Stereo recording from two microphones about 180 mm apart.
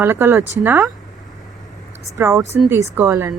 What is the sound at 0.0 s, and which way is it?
Speech, 10° right (ahead or behind).